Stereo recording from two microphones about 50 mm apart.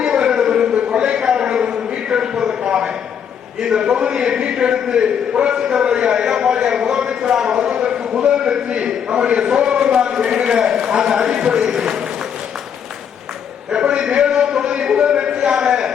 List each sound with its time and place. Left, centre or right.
0.0 s a sound: centre
3.6 s a man's voice: centre
13.7 s a man's voice: centre